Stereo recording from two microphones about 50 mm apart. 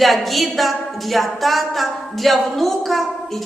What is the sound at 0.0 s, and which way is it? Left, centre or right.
A woman's voice, centre.